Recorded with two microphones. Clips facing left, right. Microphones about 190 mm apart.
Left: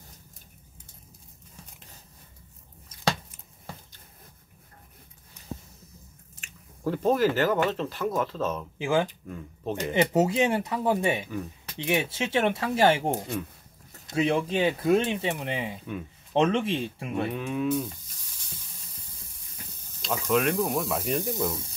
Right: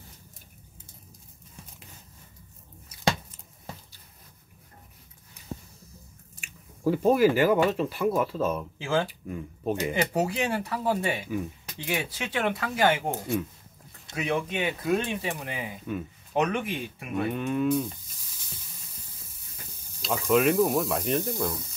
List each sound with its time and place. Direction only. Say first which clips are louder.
6.4 s speech: right 4 dB; 10° right (ahead or behind)
8.7 s speech: left 6 dB; 15° left (ahead or behind)
9.3 s speech: right 3 dB; 10° right (ahead or behind)
9.9 s speech: left 9 dB; 20° left (ahead or behind)
14.1 s speech: left 4 dB; 30° left (ahead or behind)
17.3 s speech: right 4 dB; centre (ahead or behind)
20.0 s speech: right 2 dB; centre (ahead or behind)